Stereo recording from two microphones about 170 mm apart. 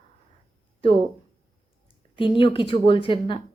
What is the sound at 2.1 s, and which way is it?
Speech, 30° left (ahead or behind).